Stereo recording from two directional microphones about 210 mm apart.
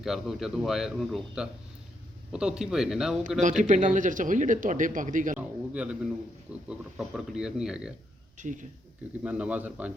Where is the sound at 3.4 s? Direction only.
35° right (ahead or behind).